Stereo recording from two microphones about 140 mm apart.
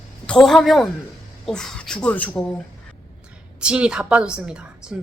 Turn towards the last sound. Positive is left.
turn(degrees=-5)  # may be behind; listen again after turning